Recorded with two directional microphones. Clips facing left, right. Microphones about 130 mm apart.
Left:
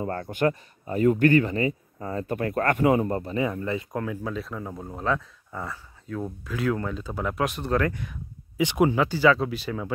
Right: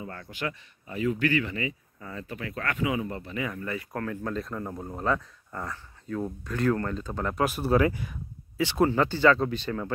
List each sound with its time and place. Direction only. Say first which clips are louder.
0.0 s speech: left 10 dB; 50° left (ahead or behind)
3.3 s speech: left 3 dB; 30° left (ahead or behind)
4.0 s speech: left 1 dB; 10° left (ahead or behind)
8.5 s speech: left 2 dB; 15° left (ahead or behind)